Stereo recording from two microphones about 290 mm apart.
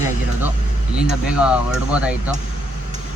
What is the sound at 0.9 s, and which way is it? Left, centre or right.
Speech, centre.